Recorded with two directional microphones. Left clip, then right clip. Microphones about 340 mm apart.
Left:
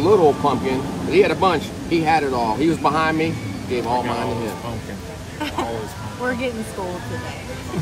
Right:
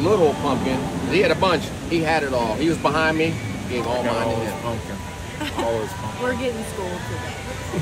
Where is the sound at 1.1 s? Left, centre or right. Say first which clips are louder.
Left 2 dB; left.